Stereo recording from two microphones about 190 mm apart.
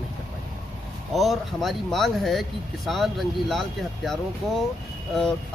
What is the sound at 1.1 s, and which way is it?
Speech, centre (ahead or behind).